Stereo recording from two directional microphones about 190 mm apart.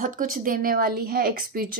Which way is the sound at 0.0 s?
45° right (ahead or behind).